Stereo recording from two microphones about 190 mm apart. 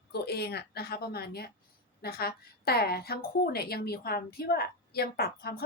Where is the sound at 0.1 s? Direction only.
60° left (ahead or behind).